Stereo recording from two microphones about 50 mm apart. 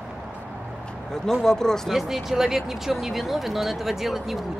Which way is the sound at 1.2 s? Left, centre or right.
Centre.